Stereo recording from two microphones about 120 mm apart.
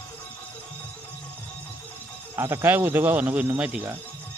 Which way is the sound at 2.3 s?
20° right (ahead or behind).